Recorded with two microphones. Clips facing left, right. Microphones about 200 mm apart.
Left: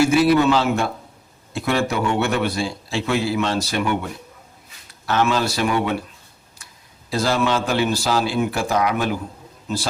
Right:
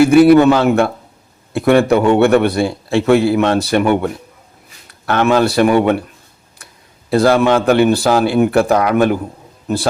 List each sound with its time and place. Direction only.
0.0 s a man's voice: 60° right (ahead or behind)
7.1 s a man's voice: 60° right (ahead or behind)